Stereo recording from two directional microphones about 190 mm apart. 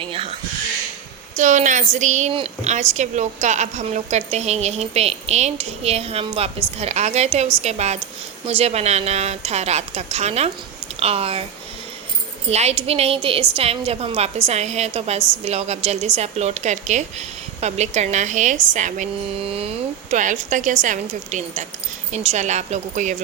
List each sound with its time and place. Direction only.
0.0 s a sound: 30° right (ahead or behind)
1.4 s a woman's voice: 40° right (ahead or behind)
12.5 s a woman's voice: 35° right (ahead or behind)